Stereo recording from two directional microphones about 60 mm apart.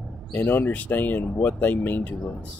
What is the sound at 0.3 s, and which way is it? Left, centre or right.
Speech, left.